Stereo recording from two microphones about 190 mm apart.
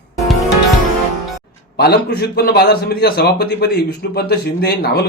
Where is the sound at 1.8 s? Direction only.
60° left (ahead or behind).